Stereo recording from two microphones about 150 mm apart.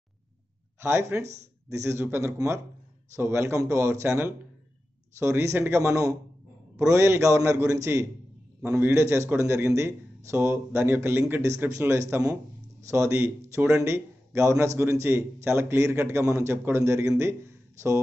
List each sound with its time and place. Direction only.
0.7 s a man's voice: 15° right (ahead or behind)